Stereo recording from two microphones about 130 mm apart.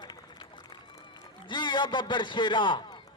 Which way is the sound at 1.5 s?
35° left (ahead or behind).